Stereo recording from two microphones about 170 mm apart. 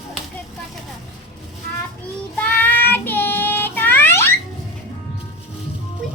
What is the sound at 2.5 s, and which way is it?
Child singing, 10° left (ahead or behind).